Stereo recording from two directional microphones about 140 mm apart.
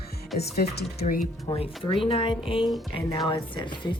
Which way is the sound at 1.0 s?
60° left (ahead or behind).